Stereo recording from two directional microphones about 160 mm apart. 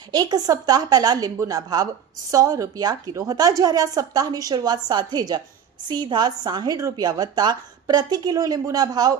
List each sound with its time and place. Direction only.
0.1 s a woman's voice: 25° right (ahead or behind)